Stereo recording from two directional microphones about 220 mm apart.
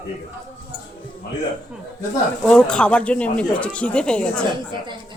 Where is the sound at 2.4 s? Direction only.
5° left (ahead or behind).